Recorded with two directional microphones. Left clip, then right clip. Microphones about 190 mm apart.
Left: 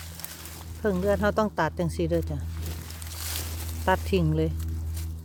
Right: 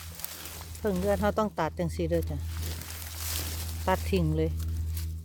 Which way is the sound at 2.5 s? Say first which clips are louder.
Even; 55° right (ahead or behind).